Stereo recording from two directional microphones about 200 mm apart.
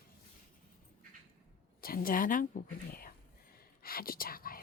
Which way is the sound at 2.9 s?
45° left (ahead or behind).